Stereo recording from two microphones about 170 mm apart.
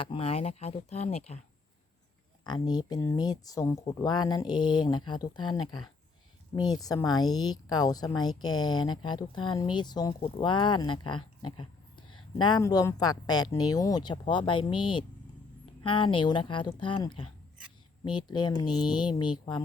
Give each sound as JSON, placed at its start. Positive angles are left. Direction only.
{"t": 0.0, "sound": "speech", "side_deg": 30}
{"t": 2.4, "sound": "speech", "side_deg": 25}